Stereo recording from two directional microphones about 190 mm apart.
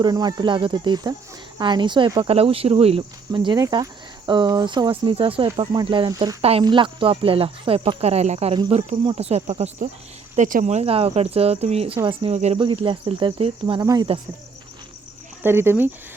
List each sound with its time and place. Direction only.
0.0 s speech: 20° right (ahead or behind)
15.4 s speech: 10° right (ahead or behind)